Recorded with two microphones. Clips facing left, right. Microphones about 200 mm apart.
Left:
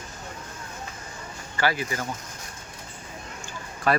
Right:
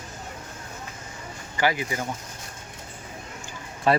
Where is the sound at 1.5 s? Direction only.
15° right (ahead or behind).